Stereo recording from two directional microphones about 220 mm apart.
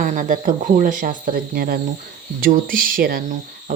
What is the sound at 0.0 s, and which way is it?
A woman's voice, 35° right (ahead or behind).